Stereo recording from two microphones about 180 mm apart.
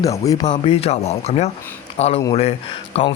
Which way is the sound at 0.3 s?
20° left (ahead or behind).